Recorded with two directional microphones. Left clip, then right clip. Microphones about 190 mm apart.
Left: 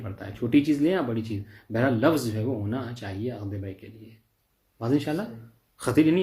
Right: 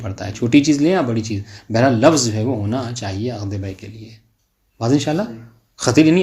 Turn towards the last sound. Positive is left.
turn(degrees=-25)  # may be behind; listen again after turning